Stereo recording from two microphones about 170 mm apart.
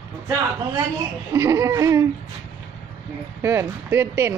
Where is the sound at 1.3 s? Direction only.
15° right (ahead or behind).